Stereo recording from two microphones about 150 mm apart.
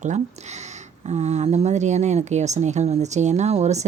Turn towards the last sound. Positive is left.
turn(degrees=-50)  # may be behind; listen again after turning